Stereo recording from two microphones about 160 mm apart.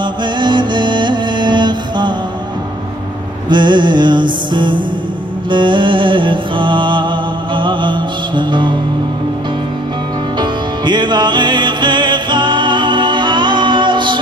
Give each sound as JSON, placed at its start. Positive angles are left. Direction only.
{"t": 0.4, "sound": "music", "side_deg": -30}
{"t": 3.4, "sound": "music", "side_deg": -30}
{"t": 10.4, "sound": "music", "side_deg": -30}